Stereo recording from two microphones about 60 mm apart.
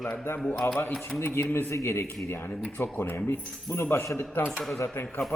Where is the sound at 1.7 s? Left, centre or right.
Left.